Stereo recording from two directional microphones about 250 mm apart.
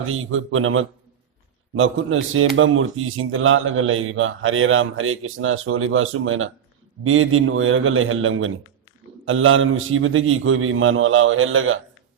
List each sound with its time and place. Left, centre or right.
0.0 s speech: right